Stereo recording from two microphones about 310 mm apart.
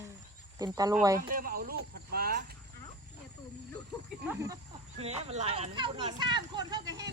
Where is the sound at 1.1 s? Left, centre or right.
Right.